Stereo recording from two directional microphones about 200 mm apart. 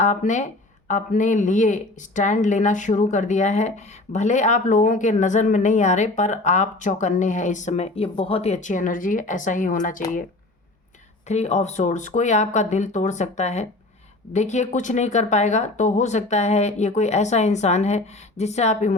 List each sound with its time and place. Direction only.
0.0 s speech: 35° left (ahead or behind)
11.3 s speech: 35° left (ahead or behind)